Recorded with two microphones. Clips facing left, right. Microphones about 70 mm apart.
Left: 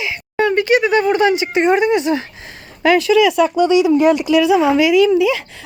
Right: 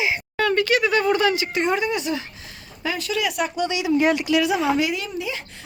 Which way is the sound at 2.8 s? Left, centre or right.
Left.